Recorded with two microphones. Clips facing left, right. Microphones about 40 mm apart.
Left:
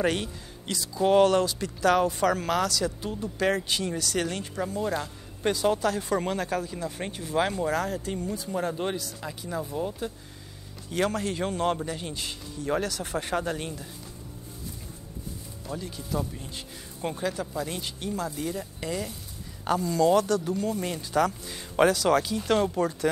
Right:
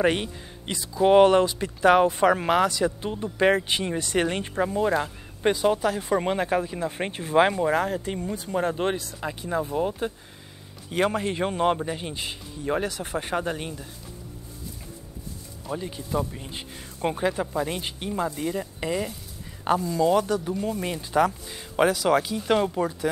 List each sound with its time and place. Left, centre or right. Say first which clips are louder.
0.0 s speech: right 4 dB; right
15.7 s speech: right 4 dB; right
19.8 s speech: left 2 dB; centre
21.5 s speech: even; centre